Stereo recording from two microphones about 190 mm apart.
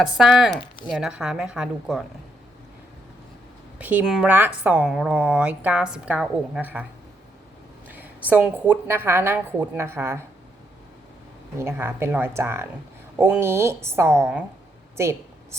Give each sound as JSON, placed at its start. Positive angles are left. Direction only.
{"t": 0.0, "sound": "a woman's voice", "side_deg": 0}
{"t": 3.8, "sound": "a woman's voice", "side_deg": -5}
{"t": 7.9, "sound": "a sound", "side_deg": -10}
{"t": 8.3, "sound": "a woman's voice", "side_deg": -10}
{"t": 11.5, "sound": "a woman's voice", "side_deg": -10}